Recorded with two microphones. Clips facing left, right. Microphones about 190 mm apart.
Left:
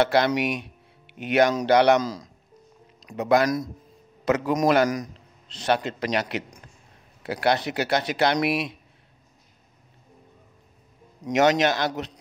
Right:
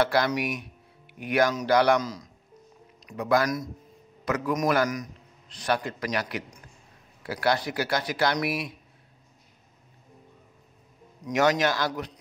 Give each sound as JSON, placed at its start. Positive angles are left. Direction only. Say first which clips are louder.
{"t": 0.0, "sound": "speech", "louder": "left 3 dB", "side_deg": 25}
{"t": 0.3, "sound": "speech", "louder": "left 4 dB", "side_deg": 75}
{"t": 1.1, "sound": "speech", "louder": "left 4 dB", "side_deg": 25}
{"t": 11.3, "sound": "speech", "louder": "left 3 dB", "side_deg": 20}